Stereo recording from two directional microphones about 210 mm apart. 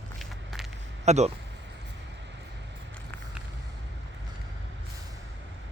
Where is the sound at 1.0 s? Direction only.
30° right (ahead or behind).